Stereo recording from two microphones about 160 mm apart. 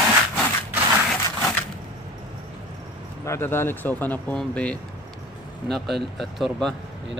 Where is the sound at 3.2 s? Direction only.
15° left (ahead or behind).